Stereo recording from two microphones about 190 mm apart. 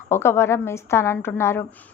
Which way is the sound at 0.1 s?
15° left (ahead or behind).